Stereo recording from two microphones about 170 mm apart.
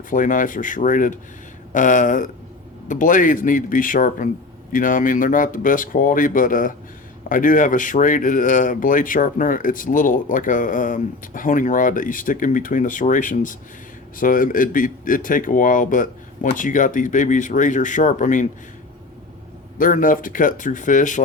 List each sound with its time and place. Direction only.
0.1 s speech: 50° left (ahead or behind)
19.8 s speech: 50° left (ahead or behind)